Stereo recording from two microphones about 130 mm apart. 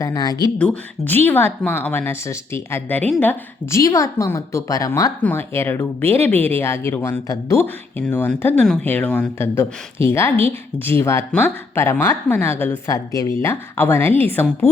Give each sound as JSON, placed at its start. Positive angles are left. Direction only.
{"t": 0.0, "sound": "a woman's voice", "side_deg": 30}
{"t": 0.6, "sound": "a woman's voice", "side_deg": 10}
{"t": 9.6, "sound": "a woman's voice", "side_deg": 20}